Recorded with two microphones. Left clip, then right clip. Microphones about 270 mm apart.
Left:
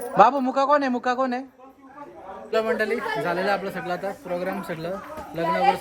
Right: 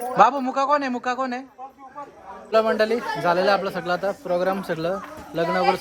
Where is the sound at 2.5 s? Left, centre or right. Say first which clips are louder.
Right 4 dB; centre.